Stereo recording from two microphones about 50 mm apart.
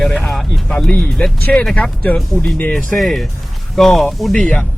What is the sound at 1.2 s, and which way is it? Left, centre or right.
Speech, left.